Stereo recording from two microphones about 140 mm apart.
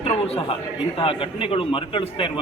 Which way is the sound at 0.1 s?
45° left (ahead or behind).